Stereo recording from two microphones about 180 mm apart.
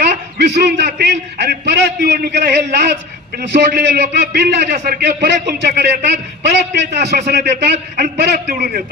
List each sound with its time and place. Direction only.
0.0 s a man's voice: 65° right (ahead or behind)